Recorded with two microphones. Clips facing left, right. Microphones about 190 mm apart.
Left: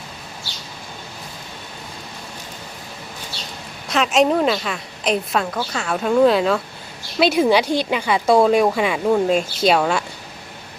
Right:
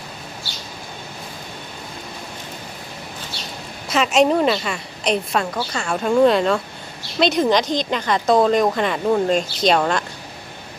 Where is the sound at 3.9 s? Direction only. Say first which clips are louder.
Even; centre (ahead or behind).